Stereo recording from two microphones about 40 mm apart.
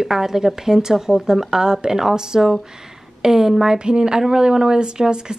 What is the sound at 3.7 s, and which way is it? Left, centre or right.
Speech, right.